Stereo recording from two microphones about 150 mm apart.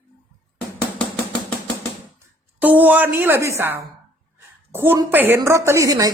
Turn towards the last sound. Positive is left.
turn(degrees=-25)  # may be behind; listen again after turning